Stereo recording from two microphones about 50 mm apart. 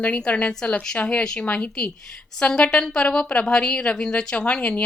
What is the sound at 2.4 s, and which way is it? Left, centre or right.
A woman's voice, centre.